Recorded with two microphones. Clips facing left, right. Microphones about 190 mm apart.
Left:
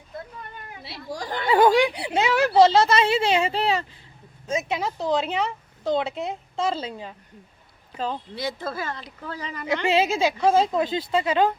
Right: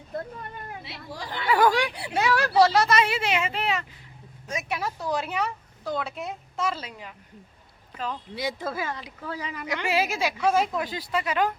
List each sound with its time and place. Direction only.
0.9 s speech: 45° left (ahead or behind)
1.5 s a woman's voice: 25° left (ahead or behind)
8.4 s speech: 10° right (ahead or behind)
9.8 s a woman's voice: 25° left (ahead or behind)